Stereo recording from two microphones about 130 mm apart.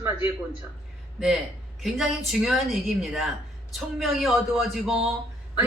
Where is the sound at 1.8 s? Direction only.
Centre (ahead or behind).